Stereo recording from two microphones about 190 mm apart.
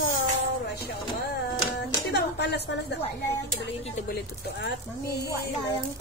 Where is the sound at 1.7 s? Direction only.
60° left (ahead or behind).